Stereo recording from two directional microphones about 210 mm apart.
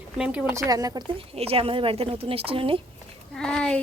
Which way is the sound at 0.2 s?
5° right (ahead or behind).